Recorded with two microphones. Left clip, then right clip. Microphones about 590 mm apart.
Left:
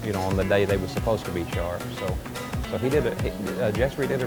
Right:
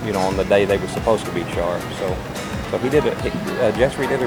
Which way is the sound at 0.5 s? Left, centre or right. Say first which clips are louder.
Right 6 dB; left.